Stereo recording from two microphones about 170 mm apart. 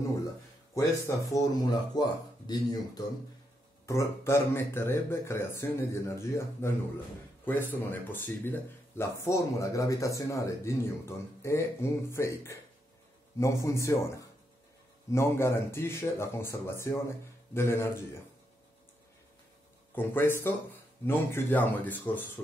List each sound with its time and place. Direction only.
0.7 s speech: 20° left (ahead or behind)
20.0 s speech: 15° left (ahead or behind)